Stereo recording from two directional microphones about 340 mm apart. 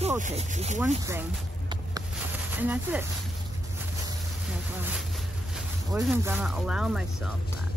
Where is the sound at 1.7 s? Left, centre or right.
Centre.